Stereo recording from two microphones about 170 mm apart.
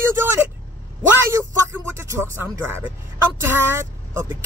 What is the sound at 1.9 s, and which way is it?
Speech, 15° right (ahead or behind).